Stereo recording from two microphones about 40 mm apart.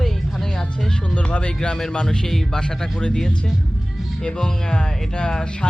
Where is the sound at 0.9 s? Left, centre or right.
Left.